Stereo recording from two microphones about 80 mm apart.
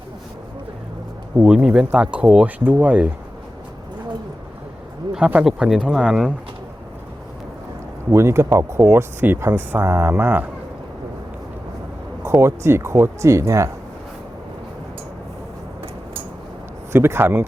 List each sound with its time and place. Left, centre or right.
1.4 s speech: centre
5.5 s speech: centre
8.1 s speech: right
12.2 s speech: right
16.9 s speech: right